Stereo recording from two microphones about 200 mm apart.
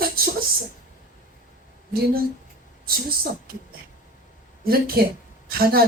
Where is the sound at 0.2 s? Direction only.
50° right (ahead or behind).